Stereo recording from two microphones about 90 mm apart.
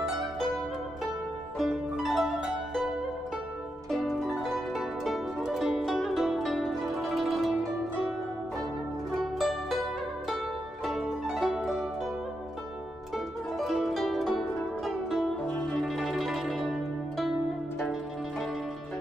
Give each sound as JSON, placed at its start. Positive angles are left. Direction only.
{"t": 0.0, "sound": "zither", "side_deg": 0}
{"t": 1.6, "sound": "music", "side_deg": 0}
{"t": 3.9, "sound": "music", "side_deg": 0}
{"t": 9.1, "sound": "music", "side_deg": 0}
{"t": 10.9, "sound": "music", "side_deg": 0}
{"t": 13.6, "sound": "music", "side_deg": 0}
{"t": 17.2, "sound": "zither", "side_deg": 0}